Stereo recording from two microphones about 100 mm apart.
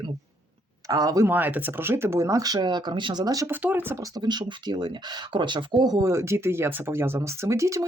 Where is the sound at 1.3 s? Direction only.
15° right (ahead or behind); by 3.4 s 40° right (ahead or behind).